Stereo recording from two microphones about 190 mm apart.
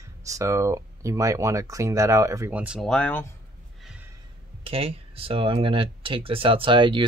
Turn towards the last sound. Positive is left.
turn(degrees=-25)  # may be behind; listen again after turning